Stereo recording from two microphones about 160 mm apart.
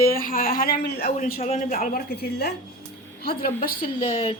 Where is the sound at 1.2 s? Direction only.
60° left (ahead or behind).